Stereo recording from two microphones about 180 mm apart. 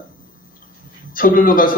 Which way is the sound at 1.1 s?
50° left (ahead or behind).